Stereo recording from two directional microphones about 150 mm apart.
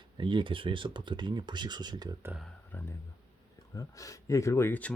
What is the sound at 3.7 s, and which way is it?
Speech, 20° left (ahead or behind).